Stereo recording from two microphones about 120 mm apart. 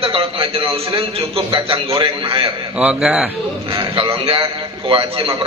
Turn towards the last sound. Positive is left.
turn(degrees=-45)  # may be behind; listen again after turning